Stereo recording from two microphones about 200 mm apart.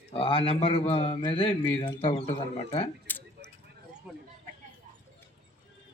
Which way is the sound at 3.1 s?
10° left (ahead or behind).